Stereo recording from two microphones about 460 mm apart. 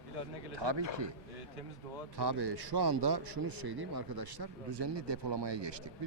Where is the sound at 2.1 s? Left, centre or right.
Right.